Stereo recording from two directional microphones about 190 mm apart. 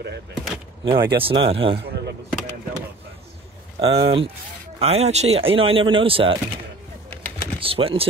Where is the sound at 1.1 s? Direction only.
30° right (ahead or behind).